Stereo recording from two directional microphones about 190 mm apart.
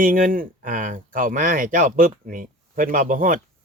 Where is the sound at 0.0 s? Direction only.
45° right (ahead or behind).